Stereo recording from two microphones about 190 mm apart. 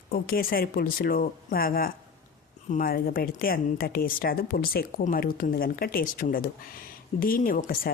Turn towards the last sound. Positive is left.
turn(degrees=45)  # may be behind; listen again after turning